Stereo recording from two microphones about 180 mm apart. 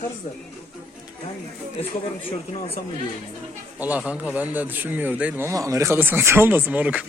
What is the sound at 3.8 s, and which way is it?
A man's voice, 10° right (ahead or behind).